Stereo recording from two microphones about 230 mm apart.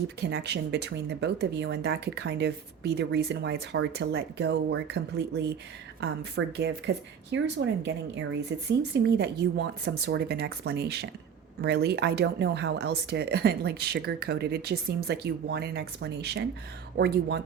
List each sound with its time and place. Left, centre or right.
0.2 s speech: right